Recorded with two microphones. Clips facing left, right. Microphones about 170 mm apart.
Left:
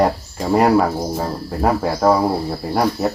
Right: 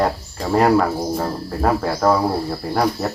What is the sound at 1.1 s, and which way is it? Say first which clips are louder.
Speech: even; 10° left (ahead or behind).